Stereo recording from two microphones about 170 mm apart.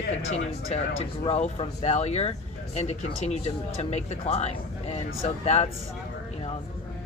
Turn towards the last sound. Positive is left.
turn(degrees=40)  # may be behind; listen again after turning